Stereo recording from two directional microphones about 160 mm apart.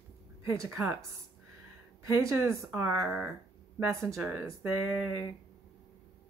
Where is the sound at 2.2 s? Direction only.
20° right (ahead or behind).